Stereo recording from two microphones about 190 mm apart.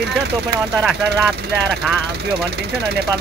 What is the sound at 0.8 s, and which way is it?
Speech, centre (ahead or behind).